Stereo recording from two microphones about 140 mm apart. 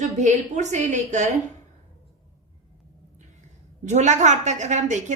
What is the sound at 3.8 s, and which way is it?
A woman's voice, 60° right (ahead or behind).